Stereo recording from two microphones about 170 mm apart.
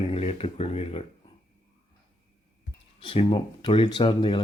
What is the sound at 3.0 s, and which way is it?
Speech, 30° left (ahead or behind).